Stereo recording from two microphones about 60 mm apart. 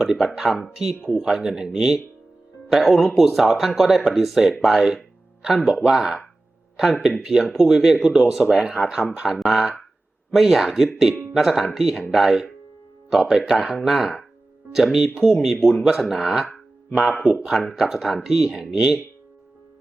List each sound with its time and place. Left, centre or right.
0.0 s speech: centre
11.1 s speech: right
11.3 s speech: centre